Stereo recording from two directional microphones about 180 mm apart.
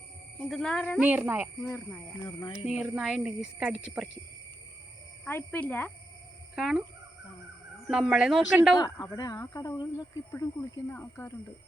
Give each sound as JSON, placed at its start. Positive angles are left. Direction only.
{"t": 0.4, "sound": "speech", "side_deg": 0}
{"t": 0.9, "sound": "speech", "side_deg": -10}
{"t": 2.2, "sound": "speech", "side_deg": 30}
{"t": 2.6, "sound": "speech", "side_deg": 0}
{"t": 5.2, "sound": "speech", "side_deg": 10}
{"t": 7.9, "sound": "speech", "side_deg": -5}
{"t": 8.8, "sound": "speech", "side_deg": 20}